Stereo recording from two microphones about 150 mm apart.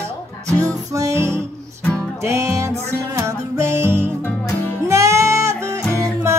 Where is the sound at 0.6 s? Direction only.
20° right (ahead or behind).